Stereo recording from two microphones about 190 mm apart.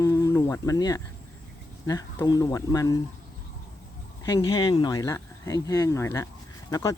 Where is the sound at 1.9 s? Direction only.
20° left (ahead or behind).